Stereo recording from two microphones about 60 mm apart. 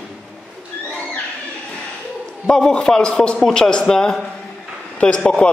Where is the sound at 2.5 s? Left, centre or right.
Centre.